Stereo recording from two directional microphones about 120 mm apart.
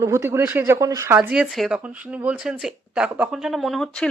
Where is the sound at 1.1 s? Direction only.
10° right (ahead or behind).